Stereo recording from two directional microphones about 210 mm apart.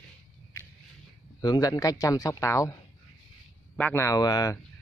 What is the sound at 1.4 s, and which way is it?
Speech, 20° left (ahead or behind).